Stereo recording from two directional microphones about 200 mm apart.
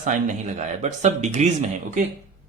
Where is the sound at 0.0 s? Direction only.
40° right (ahead or behind).